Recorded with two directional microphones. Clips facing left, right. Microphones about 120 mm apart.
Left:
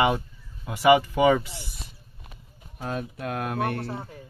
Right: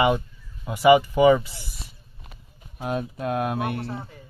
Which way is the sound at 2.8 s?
20° right (ahead or behind).